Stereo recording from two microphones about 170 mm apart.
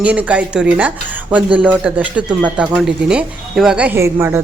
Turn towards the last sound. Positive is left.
turn(degrees=-15)  # may be behind; listen again after turning